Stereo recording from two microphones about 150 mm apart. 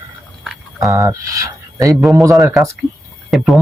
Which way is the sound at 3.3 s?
Centre (ahead or behind).